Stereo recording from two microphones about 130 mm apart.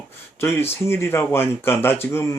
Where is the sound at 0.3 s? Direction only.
20° left (ahead or behind).